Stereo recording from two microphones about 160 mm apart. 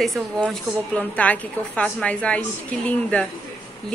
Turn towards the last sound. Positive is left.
turn(degrees=10)  # may be behind; listen again after turning